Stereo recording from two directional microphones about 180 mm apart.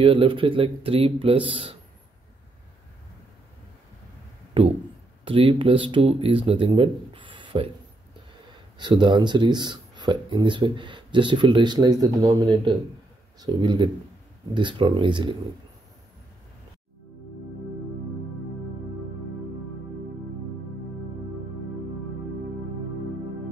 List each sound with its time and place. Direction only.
0.0 s speech: 30° right (ahead or behind)
4.6 s a sound: 30° right (ahead or behind)
5.2 s speech: 30° right (ahead or behind)
8.7 s speech: 25° right (ahead or behind)